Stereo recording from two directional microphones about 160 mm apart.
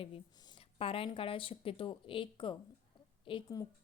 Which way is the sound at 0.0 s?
30° left (ahead or behind).